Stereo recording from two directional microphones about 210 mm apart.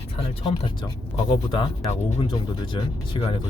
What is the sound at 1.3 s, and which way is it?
Speech, 25° left (ahead or behind).